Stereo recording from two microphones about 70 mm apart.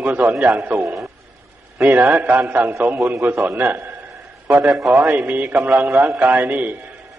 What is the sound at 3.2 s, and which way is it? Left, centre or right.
A man's voice, right.